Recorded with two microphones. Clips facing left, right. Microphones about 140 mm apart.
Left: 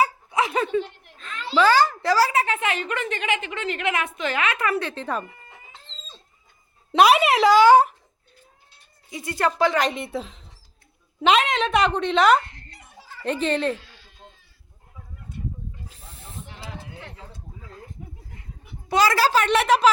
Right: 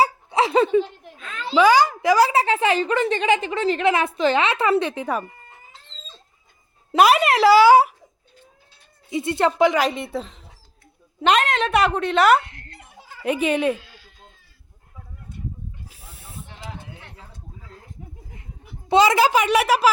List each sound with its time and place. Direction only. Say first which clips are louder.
0.0 s a sound: right 3 dB; 30° right (ahead or behind)
1.5 s a woman's voice: right 3 dB; 15° right (ahead or behind)
2.3 s a woman's voice: right 5 dB; 30° right (ahead or behind); by 5.2 s 10° right (ahead or behind)
6.9 s speech: right 1 dB; centre (ahead or behind)
9.0 s speech: right 4 dB; 25° right (ahead or behind)
9.7 s a woman's voice: right 2 dB; centre (ahead or behind)
15.9 s snake: left 1 dB; 5° right (ahead or behind)
18.9 s a woman's voice: right 4 dB; 20° right (ahead or behind)